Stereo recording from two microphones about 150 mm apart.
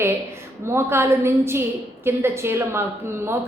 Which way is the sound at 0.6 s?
15° right (ahead or behind).